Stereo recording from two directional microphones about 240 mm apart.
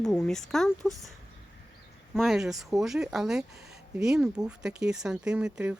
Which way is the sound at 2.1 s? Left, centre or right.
Centre.